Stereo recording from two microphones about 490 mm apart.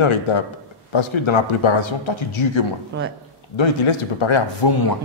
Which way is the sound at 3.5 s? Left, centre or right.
Left.